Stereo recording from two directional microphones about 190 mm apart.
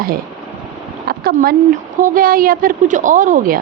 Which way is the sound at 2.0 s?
50° right (ahead or behind).